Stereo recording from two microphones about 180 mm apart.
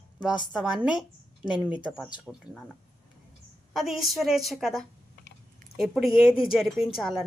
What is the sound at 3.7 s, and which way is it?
A woman's voice, centre (ahead or behind).